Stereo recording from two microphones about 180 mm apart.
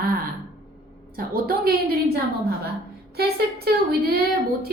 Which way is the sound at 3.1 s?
60° right (ahead or behind).